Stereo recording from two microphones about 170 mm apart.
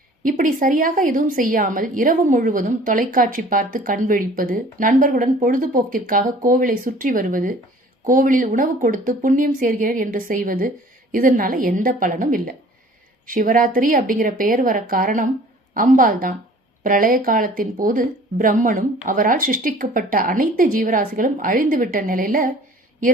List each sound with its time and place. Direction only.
0.3 s a woman's voice: 50° right (ahead or behind)